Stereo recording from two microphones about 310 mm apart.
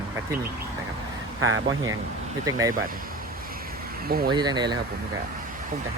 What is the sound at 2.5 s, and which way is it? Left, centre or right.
Speech, centre.